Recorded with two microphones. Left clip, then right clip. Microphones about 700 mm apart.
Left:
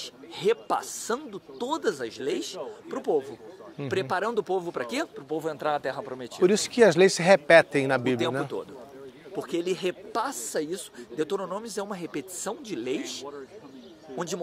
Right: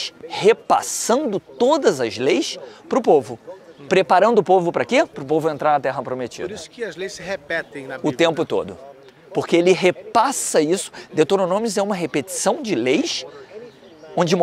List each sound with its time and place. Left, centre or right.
0.0 s a woman's voice: right
6.4 s speech: left
8.2 s a woman's voice: right
14.1 s speech: right